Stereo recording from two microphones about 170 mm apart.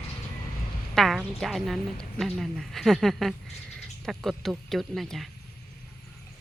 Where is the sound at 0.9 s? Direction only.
Centre (ahead or behind).